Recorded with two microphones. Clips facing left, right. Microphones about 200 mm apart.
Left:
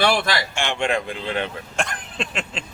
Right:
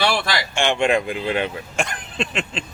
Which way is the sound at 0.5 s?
15° right (ahead or behind).